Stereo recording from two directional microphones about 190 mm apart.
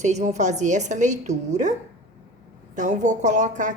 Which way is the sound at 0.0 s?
35° right (ahead or behind).